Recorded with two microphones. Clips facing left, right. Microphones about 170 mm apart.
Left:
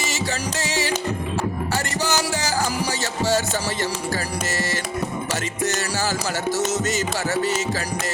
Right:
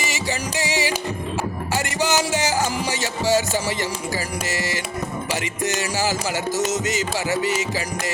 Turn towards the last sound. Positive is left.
turn(degrees=-15)  # may be behind; listen again after turning